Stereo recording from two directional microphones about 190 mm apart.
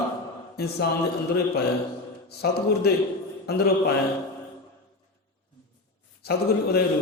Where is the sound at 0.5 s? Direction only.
55° left (ahead or behind).